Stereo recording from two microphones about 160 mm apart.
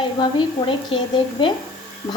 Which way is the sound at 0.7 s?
30° left (ahead or behind).